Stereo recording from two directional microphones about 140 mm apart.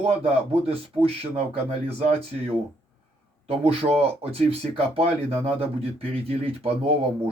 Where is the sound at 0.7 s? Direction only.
45° right (ahead or behind).